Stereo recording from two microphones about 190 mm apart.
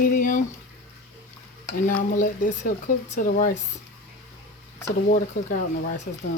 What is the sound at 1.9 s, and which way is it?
Stir, 45° left (ahead or behind).